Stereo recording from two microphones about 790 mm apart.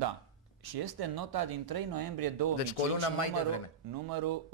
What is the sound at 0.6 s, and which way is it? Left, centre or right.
Speech, right.